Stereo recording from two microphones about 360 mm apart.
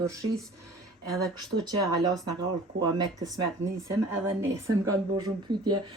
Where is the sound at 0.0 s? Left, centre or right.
Centre.